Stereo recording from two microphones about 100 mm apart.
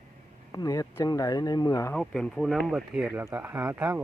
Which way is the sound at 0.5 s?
40° left (ahead or behind).